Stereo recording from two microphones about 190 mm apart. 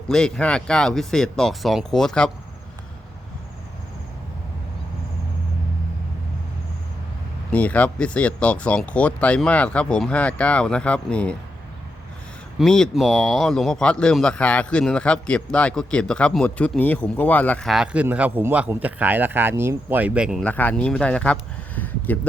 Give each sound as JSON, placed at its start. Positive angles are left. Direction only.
{"t": 0.1, "sound": "speech", "side_deg": 5}
{"t": 7.5, "sound": "speech", "side_deg": 5}
{"t": 12.5, "sound": "speech", "side_deg": 5}
{"t": 20.4, "sound": "speech", "side_deg": 10}
{"t": 21.8, "sound": "a sound", "side_deg": 10}